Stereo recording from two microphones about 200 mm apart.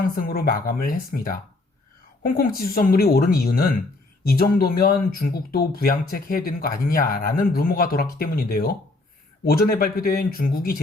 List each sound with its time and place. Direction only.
0.2 s speech: 45° left (ahead or behind)